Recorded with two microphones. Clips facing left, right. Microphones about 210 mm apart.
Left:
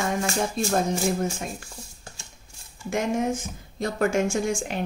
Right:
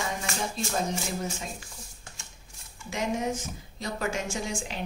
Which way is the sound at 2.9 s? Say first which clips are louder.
Left 5 dB; 50° left (ahead or behind).